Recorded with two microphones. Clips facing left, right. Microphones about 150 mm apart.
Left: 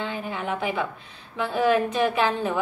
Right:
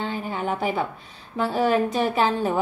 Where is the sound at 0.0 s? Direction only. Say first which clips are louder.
Right 2 dB; 40° right (ahead or behind).